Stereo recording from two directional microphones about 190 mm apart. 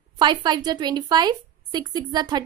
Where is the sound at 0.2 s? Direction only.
25° right (ahead or behind).